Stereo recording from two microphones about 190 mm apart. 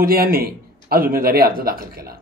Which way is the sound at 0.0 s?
50° right (ahead or behind).